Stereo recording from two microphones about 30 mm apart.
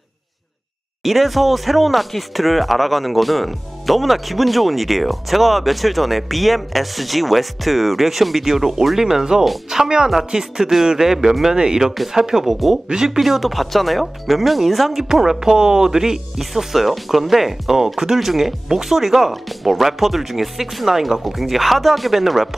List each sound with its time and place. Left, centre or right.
1.0 s speech: centre
11.5 s speech: right
13.2 s speech: centre
15.1 s speech: centre